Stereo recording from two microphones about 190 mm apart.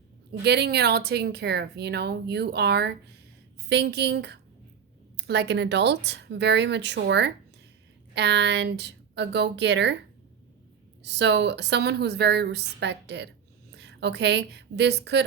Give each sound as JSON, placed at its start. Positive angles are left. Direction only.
{"t": 0.3, "sound": "speech", "side_deg": -60}
{"t": 11.0, "sound": "speech", "side_deg": -65}